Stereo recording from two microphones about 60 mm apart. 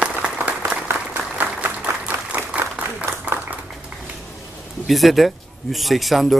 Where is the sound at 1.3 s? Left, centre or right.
Right.